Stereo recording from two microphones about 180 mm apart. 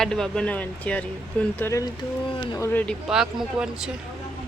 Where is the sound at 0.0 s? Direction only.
5° left (ahead or behind); by 2.6 s 25° left (ahead or behind).